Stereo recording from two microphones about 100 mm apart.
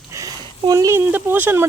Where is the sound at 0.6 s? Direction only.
40° right (ahead or behind).